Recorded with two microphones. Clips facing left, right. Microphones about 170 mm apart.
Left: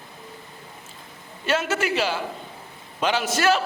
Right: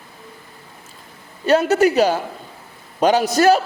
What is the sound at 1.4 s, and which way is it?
A man's voice, 40° right (ahead or behind).